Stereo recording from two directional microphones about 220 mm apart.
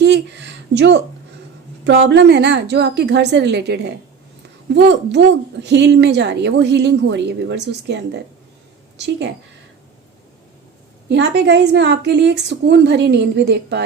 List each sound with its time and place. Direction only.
0.0 s a sound: 55° right (ahead or behind)
1.8 s a woman's voice: 50° right (ahead or behind)
11.1 s a woman's voice: 50° right (ahead or behind)